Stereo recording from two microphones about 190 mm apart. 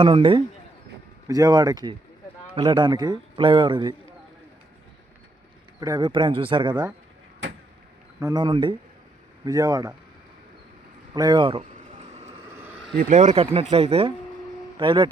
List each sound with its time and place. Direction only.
0.0 s a man's voice: 30° right (ahead or behind)
5.8 s a man's voice: 20° right (ahead or behind)
8.2 s a man's voice: 20° right (ahead or behind)
11.1 s a man's voice: 20° right (ahead or behind)
11.9 s vehicle: 35° right (ahead or behind)
13.0 s a man's voice: 40° right (ahead or behind)